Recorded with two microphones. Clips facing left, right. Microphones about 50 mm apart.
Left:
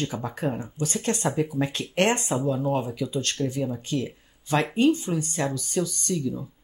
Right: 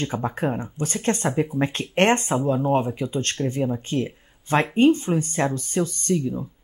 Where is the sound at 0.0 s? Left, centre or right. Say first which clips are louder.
Right 3 dB; right.